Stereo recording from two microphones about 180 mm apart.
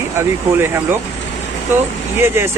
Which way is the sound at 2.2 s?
15° right (ahead or behind).